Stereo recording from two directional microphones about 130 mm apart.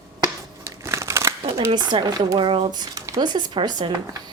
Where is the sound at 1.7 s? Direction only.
35° right (ahead or behind).